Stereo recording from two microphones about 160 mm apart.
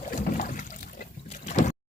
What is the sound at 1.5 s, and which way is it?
Boat, 45° left (ahead or behind).